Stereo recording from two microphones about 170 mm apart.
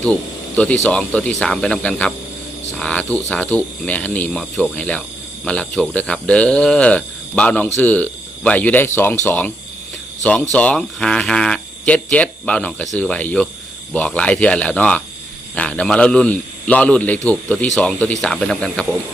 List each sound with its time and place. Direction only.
0.0 s speech: 10° left (ahead or behind)
10.5 s speech: 5° left (ahead or behind)